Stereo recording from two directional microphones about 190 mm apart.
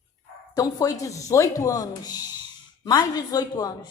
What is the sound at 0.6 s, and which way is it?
A woman's voice, 20° left (ahead or behind).